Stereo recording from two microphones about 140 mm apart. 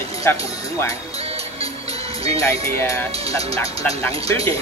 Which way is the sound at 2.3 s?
20° left (ahead or behind).